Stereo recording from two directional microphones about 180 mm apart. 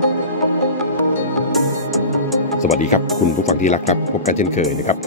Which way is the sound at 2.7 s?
40° left (ahead or behind).